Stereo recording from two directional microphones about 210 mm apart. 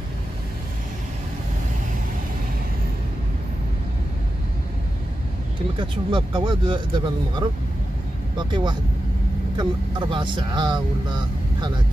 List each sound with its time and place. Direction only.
5.8 s speech: 20° right (ahead or behind)